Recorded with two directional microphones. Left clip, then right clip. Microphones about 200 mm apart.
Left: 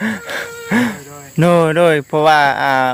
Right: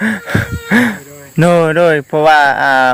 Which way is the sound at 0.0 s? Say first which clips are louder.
Right 5 dB; 10° right (ahead or behind).